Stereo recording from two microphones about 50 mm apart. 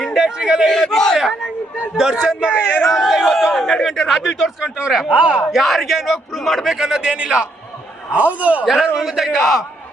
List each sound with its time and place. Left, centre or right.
0.0 s a sound: centre
0.9 s speech: centre
1.2 s speech: centre
2.5 s speech: left
2.8 s a man's voice: centre
4.1 s speech: centre
4.9 s a man's voice: centre
5.1 s speech: centre
5.5 s a man's voice: centre
6.7 s speech: centre
8.1 s a man's voice: right
8.6 s a man's voice: centre